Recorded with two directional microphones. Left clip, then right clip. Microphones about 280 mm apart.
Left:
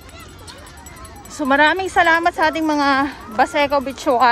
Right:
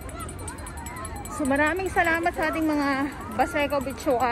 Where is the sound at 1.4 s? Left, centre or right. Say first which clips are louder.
Left 9 dB; centre.